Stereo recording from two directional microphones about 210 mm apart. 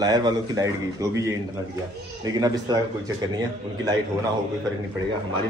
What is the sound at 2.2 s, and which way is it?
Speech, 20° right (ahead or behind).